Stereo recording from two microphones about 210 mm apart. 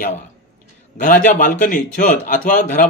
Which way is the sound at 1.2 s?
40° left (ahead or behind).